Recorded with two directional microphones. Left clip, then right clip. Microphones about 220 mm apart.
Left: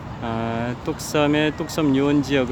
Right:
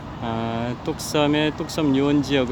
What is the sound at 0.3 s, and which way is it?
Speech, centre (ahead or behind).